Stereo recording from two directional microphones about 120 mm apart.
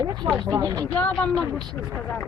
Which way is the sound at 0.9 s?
10° left (ahead or behind).